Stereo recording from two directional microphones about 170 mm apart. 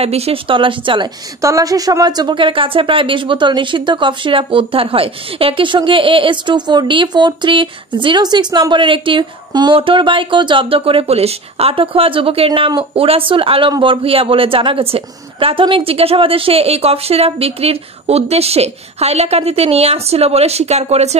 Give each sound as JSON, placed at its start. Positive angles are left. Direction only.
{"t": 0.0, "sound": "speech", "side_deg": -35}
{"t": 1.4, "sound": "speech", "side_deg": -20}